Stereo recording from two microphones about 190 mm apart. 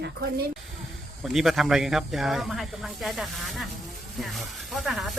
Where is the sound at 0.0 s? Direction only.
55° right (ahead or behind).